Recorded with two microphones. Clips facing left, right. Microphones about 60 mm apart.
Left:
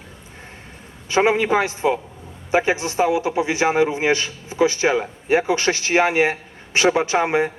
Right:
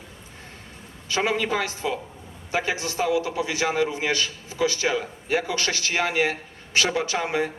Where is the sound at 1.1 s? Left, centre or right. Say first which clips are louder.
Left 7 dB; left.